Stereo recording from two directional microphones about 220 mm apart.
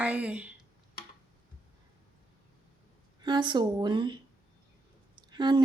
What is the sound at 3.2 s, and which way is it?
A woman's voice, 20° right (ahead or behind).